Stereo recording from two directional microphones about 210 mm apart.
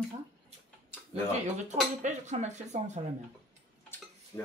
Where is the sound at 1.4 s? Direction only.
35° right (ahead or behind).